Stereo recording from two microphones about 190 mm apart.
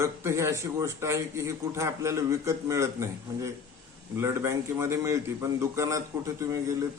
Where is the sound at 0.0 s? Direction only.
15° right (ahead or behind).